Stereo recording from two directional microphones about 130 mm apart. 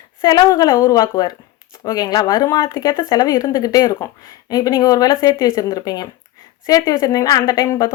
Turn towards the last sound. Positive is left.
turn(degrees=25)  # may be behind; listen again after turning